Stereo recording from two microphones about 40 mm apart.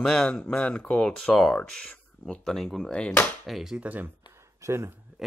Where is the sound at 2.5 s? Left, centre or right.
Centre.